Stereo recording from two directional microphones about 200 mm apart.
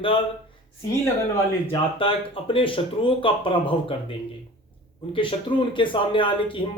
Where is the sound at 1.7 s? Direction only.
25° left (ahead or behind).